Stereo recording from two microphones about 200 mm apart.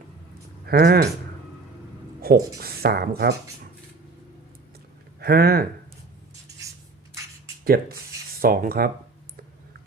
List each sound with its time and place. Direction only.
0.6 s speech: 55° right (ahead or behind)
2.2 s a sound: 50° right (ahead or behind)
2.6 s speech: 50° right (ahead or behind)
5.2 s speech: 50° right (ahead or behind)
6.6 s a sound: 15° right (ahead or behind)
7.6 s speech: 50° right (ahead or behind)